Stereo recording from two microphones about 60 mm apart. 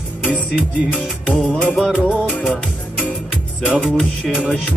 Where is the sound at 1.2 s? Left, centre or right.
Left.